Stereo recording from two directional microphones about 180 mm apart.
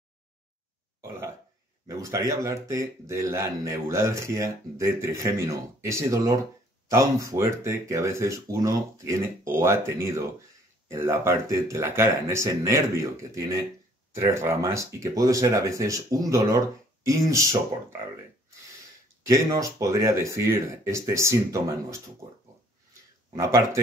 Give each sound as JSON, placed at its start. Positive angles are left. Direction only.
{"t": 1.9, "sound": "speech", "side_deg": -15}
{"t": 19.2, "sound": "speech", "side_deg": -20}
{"t": 23.3, "sound": "speech", "side_deg": -15}